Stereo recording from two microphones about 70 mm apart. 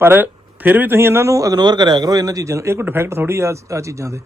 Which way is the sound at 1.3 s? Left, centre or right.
Right.